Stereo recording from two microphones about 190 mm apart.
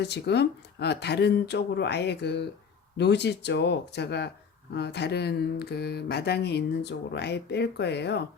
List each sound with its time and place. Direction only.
0.0 s speech: 60° left (ahead or behind)